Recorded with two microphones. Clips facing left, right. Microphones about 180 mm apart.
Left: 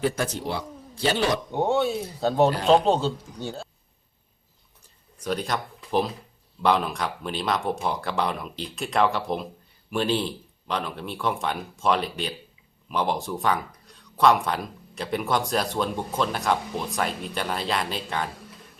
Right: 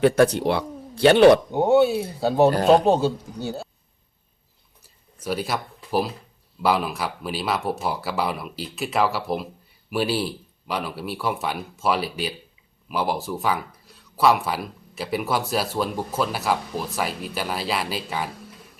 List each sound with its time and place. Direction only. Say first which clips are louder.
0.0 s speech: right 9 dB; 65° right (ahead or behind)
1.5 s speech: right 6 dB; 10° right (ahead or behind)
4.8 s a sound: right 1 dB; 5° right (ahead or behind)
6.6 s speech: even; 5° right (ahead or behind)